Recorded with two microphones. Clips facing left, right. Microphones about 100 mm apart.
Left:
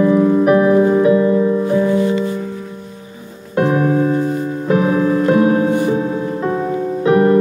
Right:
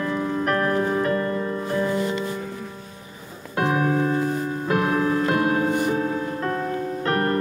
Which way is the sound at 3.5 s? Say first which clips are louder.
Left 7 dB; centre (ahead or behind).